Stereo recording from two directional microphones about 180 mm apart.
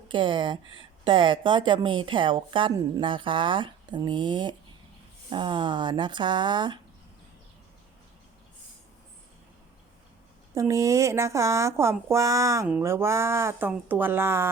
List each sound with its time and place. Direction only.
0.1 s a woman's voice: 25° right (ahead or behind)
10.5 s speech: 15° right (ahead or behind)